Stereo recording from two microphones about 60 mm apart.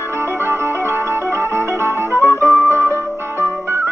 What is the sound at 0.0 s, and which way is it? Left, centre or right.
Music, right.